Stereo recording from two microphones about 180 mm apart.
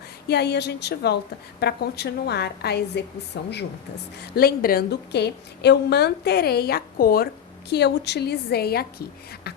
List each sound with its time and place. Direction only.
0.3 s a woman's voice: 65° left (ahead or behind)
4.2 s a woman's voice: 60° left (ahead or behind)
7.7 s a woman's voice: 70° left (ahead or behind)